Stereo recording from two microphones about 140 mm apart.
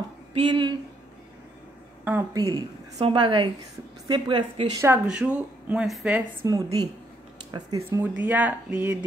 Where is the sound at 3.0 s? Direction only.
35° right (ahead or behind).